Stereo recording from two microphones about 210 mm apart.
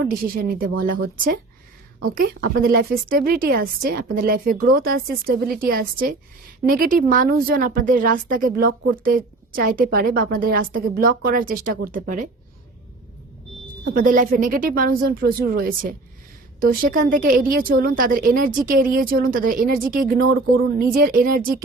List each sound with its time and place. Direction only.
0.1 s a woman's voice: 45° right (ahead or behind)
13.9 s a woman's voice: 40° right (ahead or behind)